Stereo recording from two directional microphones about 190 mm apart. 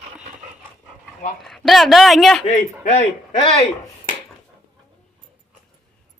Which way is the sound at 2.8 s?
40° left (ahead or behind).